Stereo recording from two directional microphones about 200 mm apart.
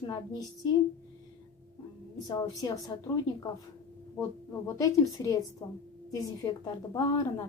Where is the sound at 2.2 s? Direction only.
20° left (ahead or behind).